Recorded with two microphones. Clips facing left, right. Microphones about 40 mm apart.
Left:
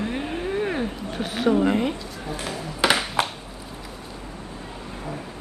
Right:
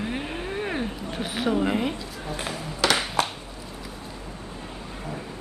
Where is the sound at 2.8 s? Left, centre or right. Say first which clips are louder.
Left 2 dB; left.